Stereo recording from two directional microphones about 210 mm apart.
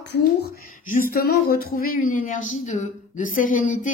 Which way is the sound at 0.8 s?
45° left (ahead or behind).